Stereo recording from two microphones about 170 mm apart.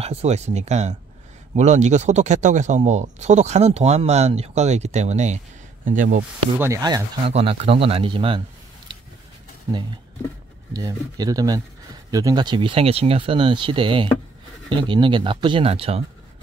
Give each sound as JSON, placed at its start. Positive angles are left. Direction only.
{"t": 0.0, "sound": "speech", "side_deg": -40}
{"t": 5.9, "sound": "speech", "side_deg": -50}
{"t": 6.6, "sound": "speech", "side_deg": -20}
{"t": 7.2, "sound": "speech", "side_deg": -35}
{"t": 10.7, "sound": "speech", "side_deg": -20}